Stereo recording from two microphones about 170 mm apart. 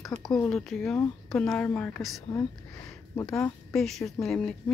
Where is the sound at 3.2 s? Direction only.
5° left (ahead or behind).